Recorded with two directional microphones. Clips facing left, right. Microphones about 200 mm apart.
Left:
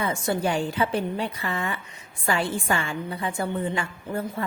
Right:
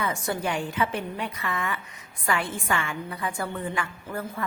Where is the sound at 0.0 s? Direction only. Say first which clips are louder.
Left 3 dB; 25° left (ahead or behind).